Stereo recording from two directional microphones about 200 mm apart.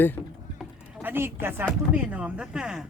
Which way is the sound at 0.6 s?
5° right (ahead or behind).